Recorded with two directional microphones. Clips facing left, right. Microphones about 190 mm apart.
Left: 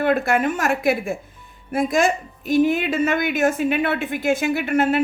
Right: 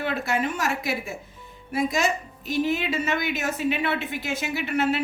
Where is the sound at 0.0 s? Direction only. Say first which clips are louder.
Left 7 dB; 55° left (ahead or behind).